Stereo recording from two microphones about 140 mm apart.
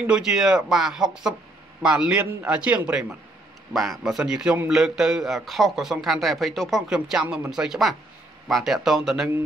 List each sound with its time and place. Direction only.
0.0 s a man's voice: 5° right (ahead or behind)